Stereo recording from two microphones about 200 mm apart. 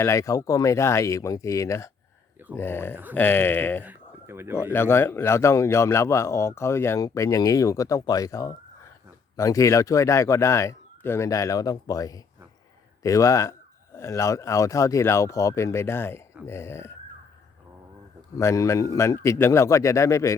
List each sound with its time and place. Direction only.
0.0 s a man's voice: 15° left (ahead or behind)
3.8 s a sound: 10° right (ahead or behind)
4.5 s a man's voice: 10° left (ahead or behind)
18.3 s a man's voice: 15° left (ahead or behind)